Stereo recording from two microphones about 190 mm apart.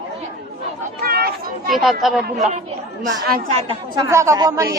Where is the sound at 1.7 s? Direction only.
Centre (ahead or behind).